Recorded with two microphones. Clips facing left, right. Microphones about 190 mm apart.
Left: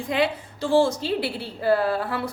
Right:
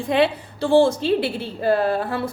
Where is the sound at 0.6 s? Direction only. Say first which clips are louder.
Right 4 dB; 60° right (ahead or behind).